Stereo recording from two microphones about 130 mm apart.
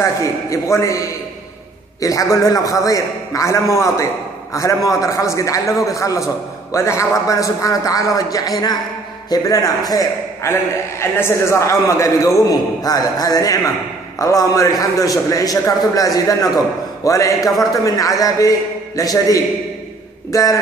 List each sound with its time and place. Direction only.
0.0 s a man's voice: 25° left (ahead or behind)
17.4 s a man's voice: centre (ahead or behind)
17.8 s a man's voice: 25° left (ahead or behind)